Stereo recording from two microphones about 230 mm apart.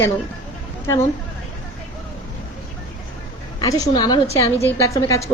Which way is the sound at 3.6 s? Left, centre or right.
Centre.